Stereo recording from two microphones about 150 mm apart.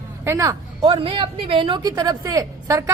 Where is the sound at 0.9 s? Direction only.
35° right (ahead or behind).